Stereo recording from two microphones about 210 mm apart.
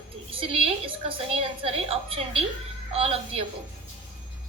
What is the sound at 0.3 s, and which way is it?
A woman's voice, 25° right (ahead or behind).